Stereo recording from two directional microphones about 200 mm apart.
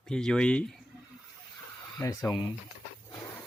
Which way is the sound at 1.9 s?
15° left (ahead or behind).